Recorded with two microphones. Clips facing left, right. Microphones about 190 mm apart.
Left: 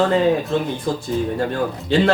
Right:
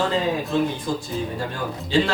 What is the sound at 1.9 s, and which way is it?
Speech, 60° left (ahead or behind).